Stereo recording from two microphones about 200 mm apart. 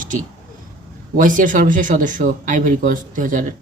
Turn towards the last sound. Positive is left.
turn(degrees=-40)  # may be behind; listen again after turning